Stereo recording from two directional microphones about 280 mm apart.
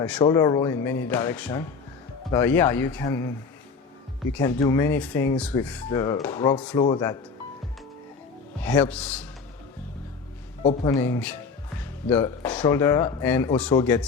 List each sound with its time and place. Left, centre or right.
0.0 s speech: centre
4.3 s speech: centre
8.6 s a man's voice: centre
10.8 s speech: centre